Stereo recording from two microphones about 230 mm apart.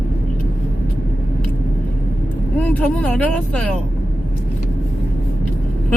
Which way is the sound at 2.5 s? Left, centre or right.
Centre.